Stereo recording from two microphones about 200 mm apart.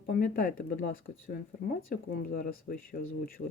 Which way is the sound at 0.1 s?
45° left (ahead or behind).